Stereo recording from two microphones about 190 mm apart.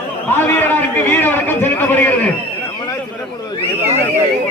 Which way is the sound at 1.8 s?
10° left (ahead or behind).